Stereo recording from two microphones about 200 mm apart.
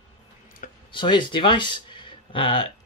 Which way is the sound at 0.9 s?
25° left (ahead or behind).